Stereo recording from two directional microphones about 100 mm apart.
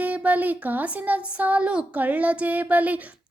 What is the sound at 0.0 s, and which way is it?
Speech, 15° right (ahead or behind).